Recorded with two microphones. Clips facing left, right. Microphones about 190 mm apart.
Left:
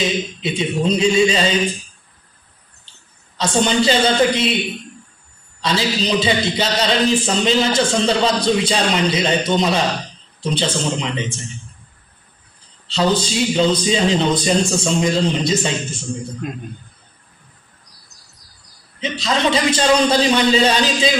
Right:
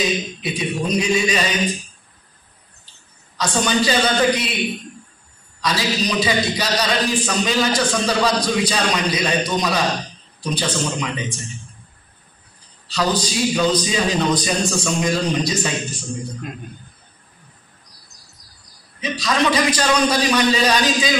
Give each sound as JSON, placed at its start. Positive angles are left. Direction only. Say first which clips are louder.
{"t": 0.0, "sound": "a man's voice", "louder": "left 1 dB", "side_deg": 25}
{"t": 3.3, "sound": "a man's voice", "louder": "left 3 dB", "side_deg": 25}
{"t": 5.6, "sound": "a man's voice", "louder": "left 2 dB", "side_deg": 25}
{"t": 12.8, "sound": "a man's voice", "louder": "left 3 dB", "side_deg": 25}
{"t": 18.9, "sound": "a man's voice", "louder": "even", "side_deg": 25}